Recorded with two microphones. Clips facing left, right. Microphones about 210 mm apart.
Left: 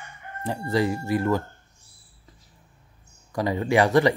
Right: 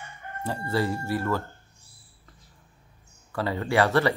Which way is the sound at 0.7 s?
15° left (ahead or behind).